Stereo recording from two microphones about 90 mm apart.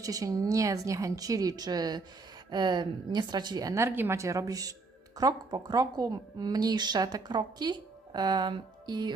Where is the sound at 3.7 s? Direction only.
25° right (ahead or behind).